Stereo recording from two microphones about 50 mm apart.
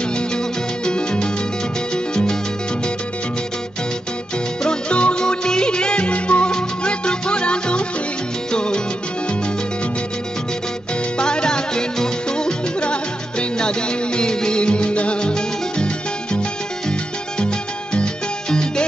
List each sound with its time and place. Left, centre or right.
0.1 s music: centre
4.6 s music: left
11.1 s music: centre